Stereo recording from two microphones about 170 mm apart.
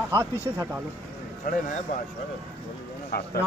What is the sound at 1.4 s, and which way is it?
Speech, 55° left (ahead or behind).